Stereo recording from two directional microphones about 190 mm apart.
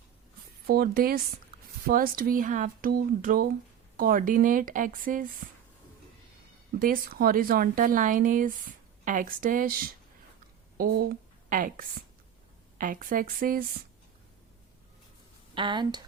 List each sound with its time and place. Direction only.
0.7 s a woman's voice: 50° right (ahead or behind)
6.7 s a woman's voice: 50° right (ahead or behind)
15.5 s speech: 25° right (ahead or behind)